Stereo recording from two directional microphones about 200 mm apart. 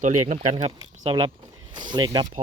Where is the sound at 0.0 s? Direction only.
35° right (ahead or behind).